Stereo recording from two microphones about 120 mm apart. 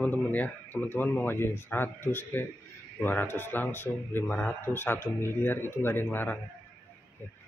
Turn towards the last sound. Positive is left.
turn(degrees=15)  # may be behind; listen again after turning